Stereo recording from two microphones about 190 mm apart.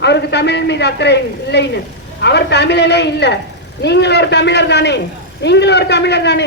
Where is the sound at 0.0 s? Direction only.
65° left (ahead or behind).